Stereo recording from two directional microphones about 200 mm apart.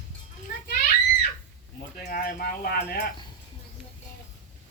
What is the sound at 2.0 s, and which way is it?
Speech, 45° left (ahead or behind).